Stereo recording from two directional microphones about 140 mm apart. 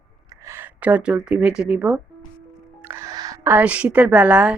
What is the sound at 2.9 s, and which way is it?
Music, 20° right (ahead or behind).